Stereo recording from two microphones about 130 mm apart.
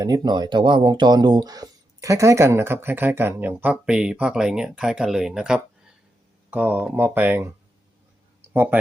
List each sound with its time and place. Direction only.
0.0 s speech: 30° right (ahead or behind); by 7.5 s 15° right (ahead or behind)
8.5 s speech: 15° right (ahead or behind)